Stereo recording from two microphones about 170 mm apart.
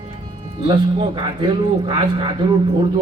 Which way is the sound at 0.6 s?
25° right (ahead or behind).